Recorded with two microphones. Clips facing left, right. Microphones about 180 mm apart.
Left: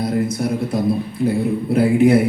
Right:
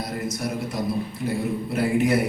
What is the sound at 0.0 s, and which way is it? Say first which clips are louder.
Speech: left 9 dB; 55° left (ahead or behind).